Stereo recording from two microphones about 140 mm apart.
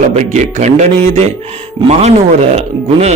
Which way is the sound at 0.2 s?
60° right (ahead or behind).